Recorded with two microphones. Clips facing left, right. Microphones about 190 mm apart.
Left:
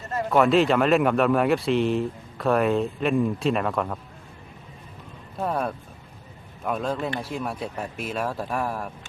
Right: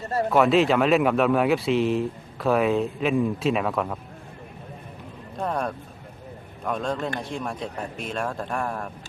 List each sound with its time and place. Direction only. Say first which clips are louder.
0.0 s a sound: right 3 dB; 35° right (ahead or behind)
0.3 s a man's voice: even; centre (ahead or behind)
5.4 s a man's voice: left 1 dB; 5° left (ahead or behind)